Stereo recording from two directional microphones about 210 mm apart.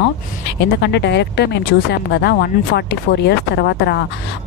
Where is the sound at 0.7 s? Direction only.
55° left (ahead or behind).